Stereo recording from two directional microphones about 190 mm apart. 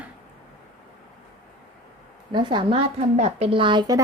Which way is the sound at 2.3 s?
25° right (ahead or behind).